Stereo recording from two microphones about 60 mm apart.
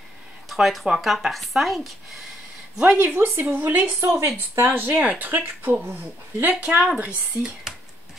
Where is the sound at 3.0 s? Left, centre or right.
Right.